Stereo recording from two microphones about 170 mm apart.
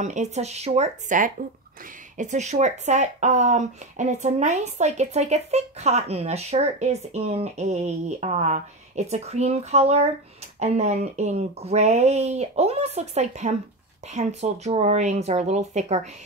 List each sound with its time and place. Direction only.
0.0 s speech: 45° right (ahead or behind)